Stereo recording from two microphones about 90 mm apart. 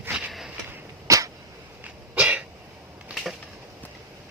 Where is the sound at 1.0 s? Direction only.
40° right (ahead or behind).